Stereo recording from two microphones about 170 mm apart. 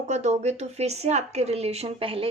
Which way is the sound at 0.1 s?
40° right (ahead or behind).